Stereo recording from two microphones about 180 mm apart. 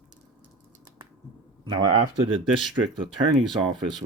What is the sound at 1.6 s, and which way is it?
Speech, 25° right (ahead or behind).